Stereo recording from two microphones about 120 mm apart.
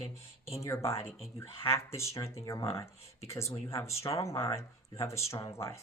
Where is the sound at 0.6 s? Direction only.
25° left (ahead or behind).